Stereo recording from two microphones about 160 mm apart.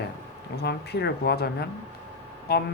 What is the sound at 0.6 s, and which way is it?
Speech, 90° left.